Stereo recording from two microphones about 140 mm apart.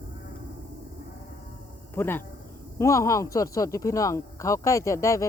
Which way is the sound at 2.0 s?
15° left (ahead or behind).